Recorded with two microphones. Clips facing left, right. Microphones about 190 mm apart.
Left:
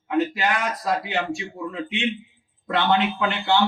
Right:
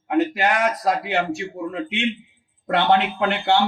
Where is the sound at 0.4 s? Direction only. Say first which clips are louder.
Right 4 dB; 65° right (ahead or behind).